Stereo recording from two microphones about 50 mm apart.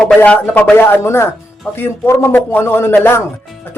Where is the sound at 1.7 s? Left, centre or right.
Left.